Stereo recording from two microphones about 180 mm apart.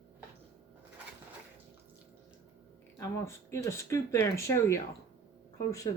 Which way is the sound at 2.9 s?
15° left (ahead or behind).